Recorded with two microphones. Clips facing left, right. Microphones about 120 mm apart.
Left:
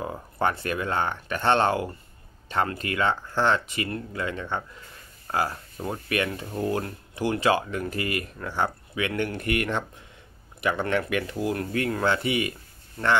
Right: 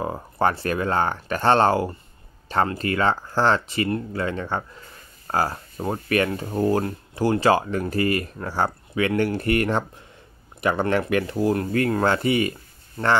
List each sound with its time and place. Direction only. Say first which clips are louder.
0.0 s speech: right 4 dB; 35° right (ahead or behind)
11.7 s speech: right 4 dB; 45° right (ahead or behind)